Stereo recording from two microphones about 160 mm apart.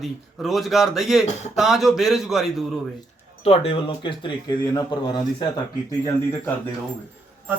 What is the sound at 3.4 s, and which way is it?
Speech, 35° left (ahead or behind).